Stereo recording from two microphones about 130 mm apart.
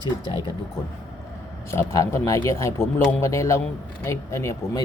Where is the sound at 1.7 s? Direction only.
20° left (ahead or behind).